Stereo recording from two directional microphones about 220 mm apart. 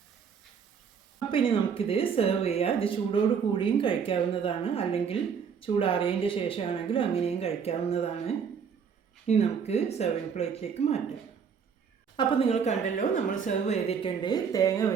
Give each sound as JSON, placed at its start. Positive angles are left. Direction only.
{"t": 1.3, "sound": "a woman's voice", "side_deg": 25}
{"t": 9.2, "sound": "a woman's voice", "side_deg": 30}
{"t": 12.1, "sound": "a woman's voice", "side_deg": 25}